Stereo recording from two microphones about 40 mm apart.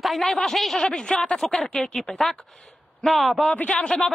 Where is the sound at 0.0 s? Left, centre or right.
Centre.